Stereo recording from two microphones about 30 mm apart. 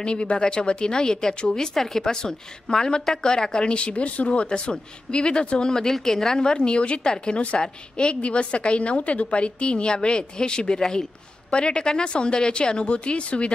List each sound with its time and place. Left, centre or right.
0.0 s a woman's voice: left
3.6 s speech: left
4.3 s a woman's voice: left
5.9 s a woman's voice: centre
6.3 s a woman's voice: left
11.5 s a woman's voice: left